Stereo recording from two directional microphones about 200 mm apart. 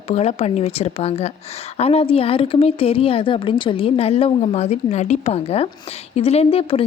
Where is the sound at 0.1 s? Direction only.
30° left (ahead or behind).